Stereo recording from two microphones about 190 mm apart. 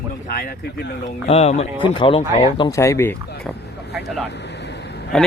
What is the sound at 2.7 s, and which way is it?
Speech, 15° left (ahead or behind).